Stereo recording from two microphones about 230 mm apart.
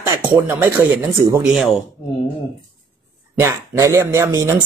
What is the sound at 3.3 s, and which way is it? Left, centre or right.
Speech, centre.